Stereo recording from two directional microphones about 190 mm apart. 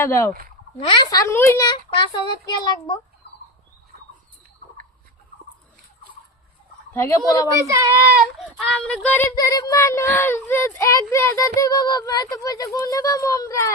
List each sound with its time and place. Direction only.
0.0 s a child's voice: 15° left (ahead or behind)
3.2 s fowl: 60° left (ahead or behind)
6.9 s speech: 15° left (ahead or behind)
7.7 s speech: 15° right (ahead or behind); by 9.2 s 5° left (ahead or behind)
9.3 s speech: 20° left (ahead or behind)